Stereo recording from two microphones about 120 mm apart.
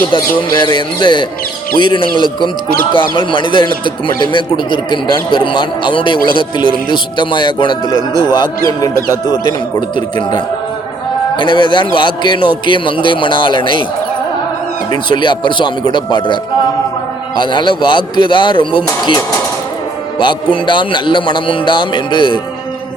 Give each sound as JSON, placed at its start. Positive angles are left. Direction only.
{"t": 0.1, "sound": "a man's voice", "side_deg": 40}
{"t": 15.1, "sound": "a man's voice", "side_deg": 40}